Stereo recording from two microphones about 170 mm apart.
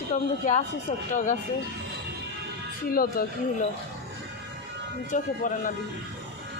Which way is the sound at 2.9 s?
60° left (ahead or behind).